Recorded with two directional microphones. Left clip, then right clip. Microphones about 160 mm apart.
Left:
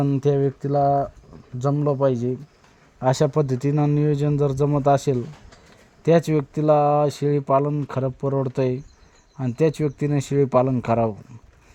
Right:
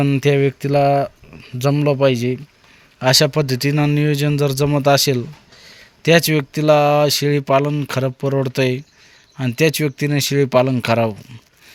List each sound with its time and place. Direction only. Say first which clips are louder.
0.0 s speech: right 5 dB; 5° right (ahead or behind)
0.3 s speech: right 5 dB; 40° right (ahead or behind)
2.0 s speech: right 5 dB; 10° right (ahead or behind)
3.0 s speech: right 5 dB; 5° left (ahead or behind)
8.2 s speech: right 3 dB; 15° right (ahead or behind)
8.4 s speech: right 5 dB; 5° right (ahead or behind)